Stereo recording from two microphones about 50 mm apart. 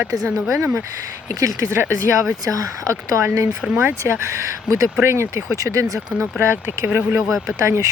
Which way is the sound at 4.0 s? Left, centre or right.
Right.